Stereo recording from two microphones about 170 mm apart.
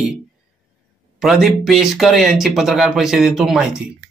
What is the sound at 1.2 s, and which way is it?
Speech, centre (ahead or behind).